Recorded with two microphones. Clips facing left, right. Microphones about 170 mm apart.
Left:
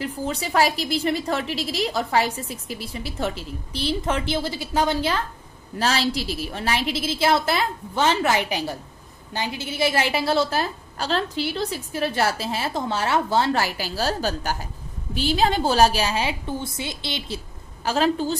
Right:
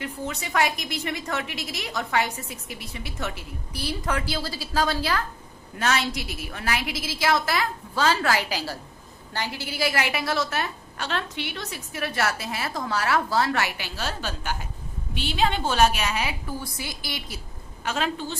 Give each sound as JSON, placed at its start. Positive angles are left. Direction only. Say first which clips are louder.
{"t": 0.0, "sound": "a woman's voice", "louder": "left 5 dB", "side_deg": 30}
{"t": 5.8, "sound": "a woman's voice", "louder": "left 3 dB", "side_deg": 30}